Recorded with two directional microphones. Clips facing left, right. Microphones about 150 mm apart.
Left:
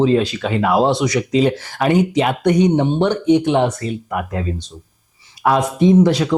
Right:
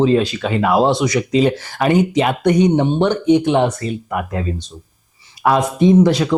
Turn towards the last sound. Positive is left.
turn(degrees=-20)  # may be behind; listen again after turning